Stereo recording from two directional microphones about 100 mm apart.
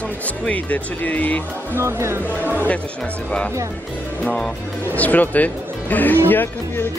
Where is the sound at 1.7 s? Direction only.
25° right (ahead or behind).